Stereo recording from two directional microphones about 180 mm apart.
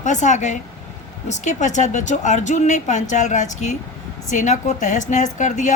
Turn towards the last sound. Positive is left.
turn(degrees=45)  # may be behind; listen again after turning